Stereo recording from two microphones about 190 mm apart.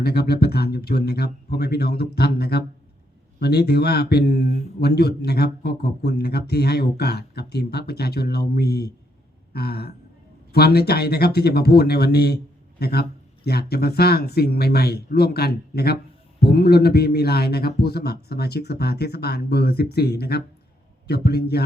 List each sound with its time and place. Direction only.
0.0 s speech: 55° left (ahead or behind)
9.5 s a sound: 55° left (ahead or behind)
10.5 s speech: 55° left (ahead or behind)